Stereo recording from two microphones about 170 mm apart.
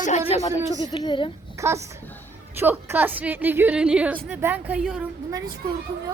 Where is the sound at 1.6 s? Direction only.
15° right (ahead or behind).